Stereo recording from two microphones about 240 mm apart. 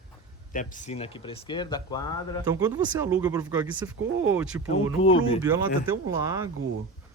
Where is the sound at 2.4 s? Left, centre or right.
Centre.